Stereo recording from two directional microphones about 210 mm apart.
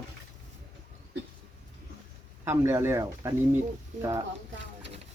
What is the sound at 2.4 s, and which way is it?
Speech, 10° right (ahead or behind).